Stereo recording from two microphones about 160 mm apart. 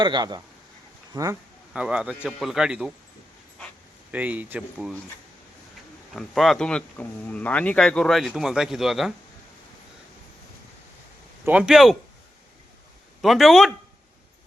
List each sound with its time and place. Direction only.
0.0 s speech: 25° right (ahead or behind)
1.7 s speech: 5° right (ahead or behind)
4.1 s speech: 10° right (ahead or behind)
6.1 s speech: centre (ahead or behind)
11.4 s speech: 5° right (ahead or behind)
13.2 s speech: centre (ahead or behind)